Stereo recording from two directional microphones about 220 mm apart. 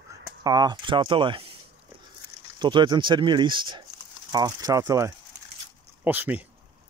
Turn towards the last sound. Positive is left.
turn(degrees=-10)  # may be behind; listen again after turning